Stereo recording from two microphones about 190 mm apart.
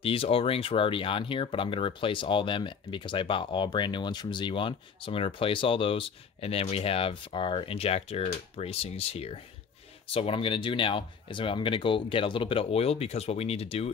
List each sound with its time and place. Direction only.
0.0 s speech: 30° left (ahead or behind)